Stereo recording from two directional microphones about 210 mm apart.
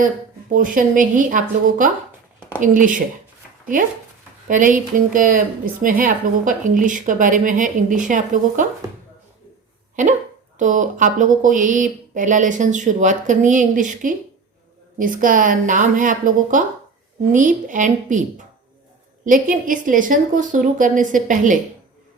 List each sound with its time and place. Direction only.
0.5 s a woman's voice: 40° right (ahead or behind)
4.4 s a woman's voice: 40° right (ahead or behind)
9.9 s a woman's voice: 35° right (ahead or behind)